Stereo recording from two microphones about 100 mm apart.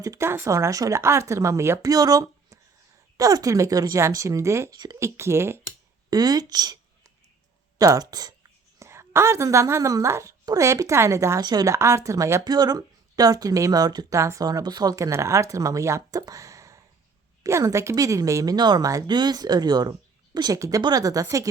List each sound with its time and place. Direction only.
0.0 s speech: 30° right (ahead or behind)
1.9 s speech: 40° right (ahead or behind)
6.1 s a woman's voice: 40° right (ahead or behind)
11.4 s speech: 40° right (ahead or behind)
11.7 s speech: 30° right (ahead or behind)
19.0 s speech: 45° right (ahead or behind)